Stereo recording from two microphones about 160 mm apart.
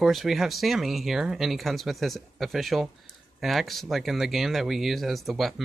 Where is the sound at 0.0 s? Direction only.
Centre (ahead or behind).